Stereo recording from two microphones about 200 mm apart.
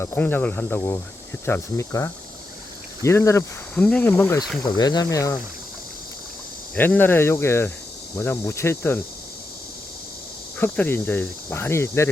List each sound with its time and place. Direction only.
0.0 s speech: 10° left (ahead or behind)
6.7 s speech: 10° left (ahead or behind)
10.6 s speech: 10° left (ahead or behind)